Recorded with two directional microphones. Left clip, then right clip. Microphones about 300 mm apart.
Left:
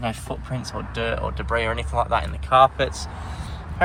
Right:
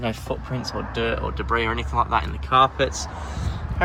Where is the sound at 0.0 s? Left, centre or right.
Centre.